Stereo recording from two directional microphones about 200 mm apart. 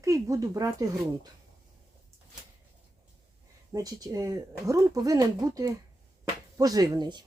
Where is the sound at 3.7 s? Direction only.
20° right (ahead or behind).